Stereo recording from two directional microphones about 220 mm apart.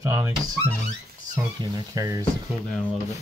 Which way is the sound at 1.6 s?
20° right (ahead or behind).